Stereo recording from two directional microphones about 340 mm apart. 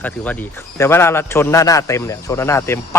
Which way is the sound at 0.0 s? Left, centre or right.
Centre.